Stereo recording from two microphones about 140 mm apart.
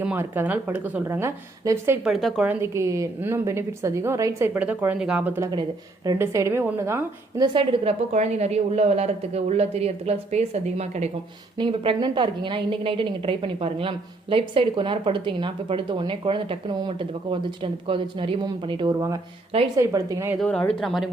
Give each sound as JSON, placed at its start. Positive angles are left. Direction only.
{"t": 0.0, "sound": "a woman's voice", "side_deg": -15}
{"t": 2.0, "sound": "speech", "side_deg": 0}
{"t": 2.5, "sound": "a woman's voice", "side_deg": -20}
{"t": 5.4, "sound": "a woman's voice", "side_deg": -30}
{"t": 7.4, "sound": "a woman's voice", "side_deg": -35}
{"t": 8.1, "sound": "speech", "side_deg": -50}
{"t": 11.5, "sound": "a woman's voice", "side_deg": -35}
{"t": 19.7, "sound": "a woman's voice", "side_deg": -25}
{"t": 20.4, "sound": "speech", "side_deg": 5}